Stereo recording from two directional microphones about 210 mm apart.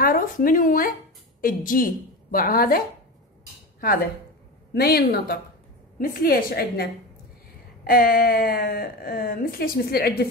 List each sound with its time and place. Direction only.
0.0 s a woman's voice: 40° left (ahead or behind)
3.8 s a woman's voice: 45° left (ahead or behind)